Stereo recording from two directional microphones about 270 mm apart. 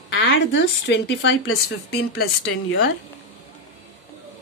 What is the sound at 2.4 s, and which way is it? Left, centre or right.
Speech, left.